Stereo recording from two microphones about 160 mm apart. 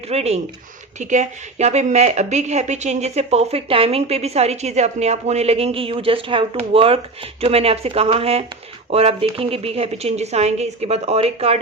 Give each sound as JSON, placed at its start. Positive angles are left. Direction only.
{"t": 0.1, "sound": "a woman's voice", "side_deg": -40}